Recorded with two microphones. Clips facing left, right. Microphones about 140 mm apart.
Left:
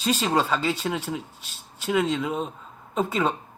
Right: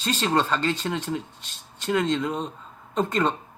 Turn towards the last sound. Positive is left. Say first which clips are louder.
# right 1 dB
turn(degrees=5)  # may be behind; listen again after turning